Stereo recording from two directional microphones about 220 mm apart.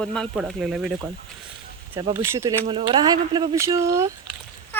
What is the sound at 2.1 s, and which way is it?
Speech, 10° right (ahead or behind).